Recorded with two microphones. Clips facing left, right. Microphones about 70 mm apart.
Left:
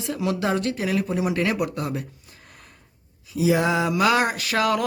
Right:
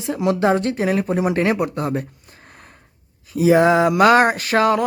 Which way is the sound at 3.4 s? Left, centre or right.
Right.